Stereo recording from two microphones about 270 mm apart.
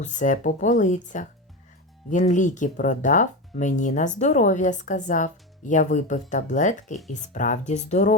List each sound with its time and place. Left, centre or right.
0.0 s speech: left